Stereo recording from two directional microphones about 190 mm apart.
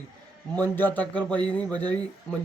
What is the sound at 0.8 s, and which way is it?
Speech, 10° left (ahead or behind).